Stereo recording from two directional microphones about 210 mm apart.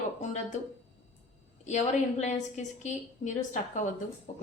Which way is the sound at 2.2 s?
35° left (ahead or behind).